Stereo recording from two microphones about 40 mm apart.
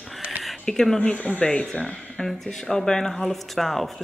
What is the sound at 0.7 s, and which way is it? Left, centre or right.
Speech, centre.